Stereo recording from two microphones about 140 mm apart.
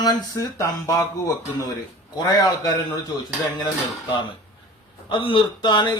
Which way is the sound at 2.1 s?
30° left (ahead or behind).